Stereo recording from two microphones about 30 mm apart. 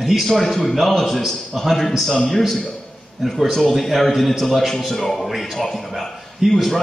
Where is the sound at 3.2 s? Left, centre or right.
Centre.